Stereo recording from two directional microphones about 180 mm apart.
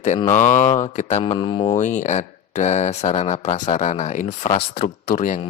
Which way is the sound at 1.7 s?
40° left (ahead or behind).